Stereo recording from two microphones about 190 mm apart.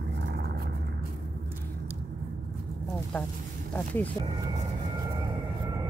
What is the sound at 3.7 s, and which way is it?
Speech, 10° left (ahead or behind).